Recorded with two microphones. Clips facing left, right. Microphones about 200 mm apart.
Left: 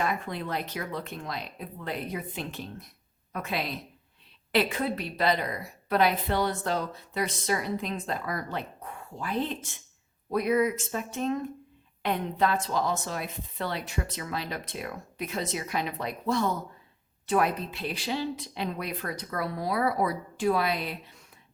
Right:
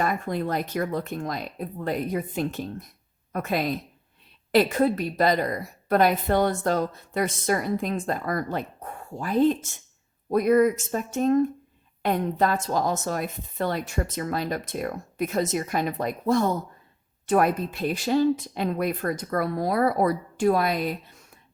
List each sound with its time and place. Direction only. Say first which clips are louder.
0.0 s a woman's voice: right 5 dB; 45° right (ahead or behind)